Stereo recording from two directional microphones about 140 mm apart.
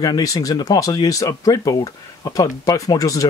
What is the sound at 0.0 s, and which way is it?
Speech, 25° left (ahead or behind).